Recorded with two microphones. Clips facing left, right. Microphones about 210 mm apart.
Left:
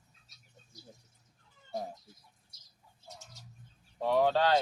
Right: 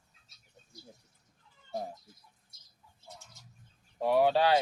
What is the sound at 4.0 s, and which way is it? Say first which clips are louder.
Speech: right 2 dB; 10° right (ahead or behind).